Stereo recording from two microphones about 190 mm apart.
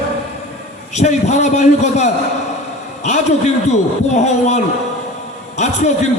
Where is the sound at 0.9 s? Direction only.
35° left (ahead or behind).